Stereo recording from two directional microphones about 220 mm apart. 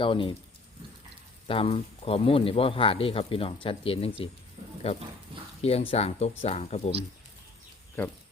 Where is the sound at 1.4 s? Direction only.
25° left (ahead or behind).